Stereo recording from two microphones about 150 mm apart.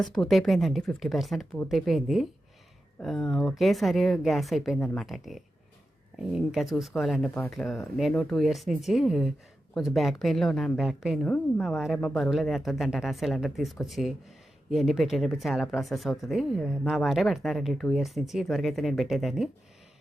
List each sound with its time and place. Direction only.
0.0 s speech: centre (ahead or behind)